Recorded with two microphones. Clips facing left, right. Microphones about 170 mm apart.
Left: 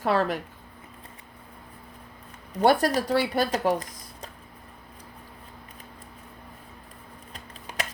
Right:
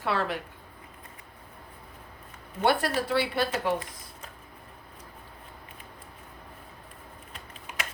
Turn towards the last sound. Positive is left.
turn(degrees=35)  # may be behind; listen again after turning